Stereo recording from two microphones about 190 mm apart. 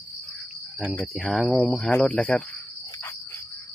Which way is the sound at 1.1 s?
Centre (ahead or behind).